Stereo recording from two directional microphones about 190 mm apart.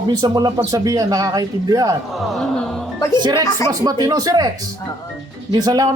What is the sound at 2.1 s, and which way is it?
Cat, centre (ahead or behind).